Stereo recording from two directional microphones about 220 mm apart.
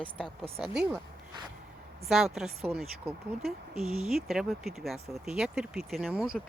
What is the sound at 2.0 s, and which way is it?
Speech, centre (ahead or behind).